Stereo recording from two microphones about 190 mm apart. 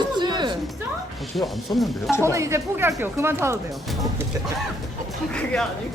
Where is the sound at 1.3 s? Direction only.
Centre (ahead or behind).